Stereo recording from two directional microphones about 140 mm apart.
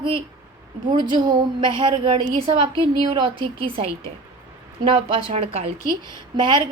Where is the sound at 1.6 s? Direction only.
35° right (ahead or behind).